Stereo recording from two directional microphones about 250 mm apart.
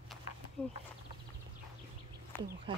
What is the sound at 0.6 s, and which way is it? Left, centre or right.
Speech, centre.